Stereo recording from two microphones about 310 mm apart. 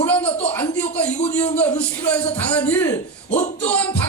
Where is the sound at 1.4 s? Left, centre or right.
Centre.